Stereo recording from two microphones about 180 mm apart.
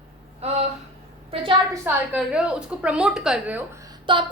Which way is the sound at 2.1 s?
5° right (ahead or behind).